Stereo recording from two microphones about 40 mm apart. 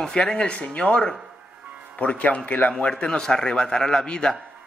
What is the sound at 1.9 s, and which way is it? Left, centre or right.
A man's voice, left.